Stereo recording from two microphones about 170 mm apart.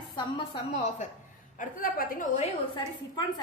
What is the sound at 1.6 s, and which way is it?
Speech, 55° left (ahead or behind).